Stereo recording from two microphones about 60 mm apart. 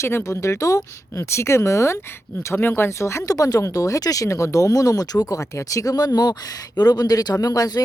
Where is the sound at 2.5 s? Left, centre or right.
Left.